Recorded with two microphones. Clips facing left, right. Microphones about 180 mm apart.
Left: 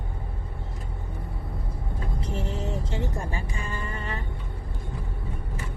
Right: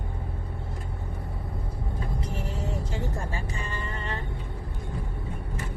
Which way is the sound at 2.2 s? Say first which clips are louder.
Left 2 dB; 25° left (ahead or behind).